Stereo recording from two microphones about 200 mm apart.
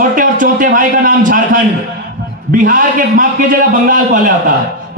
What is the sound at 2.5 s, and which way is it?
A man's voice, 40° right (ahead or behind).